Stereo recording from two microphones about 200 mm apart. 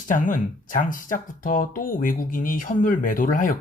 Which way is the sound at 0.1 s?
40° left (ahead or behind).